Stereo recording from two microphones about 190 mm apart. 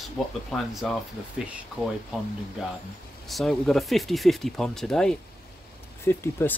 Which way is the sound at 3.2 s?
Centre (ahead or behind).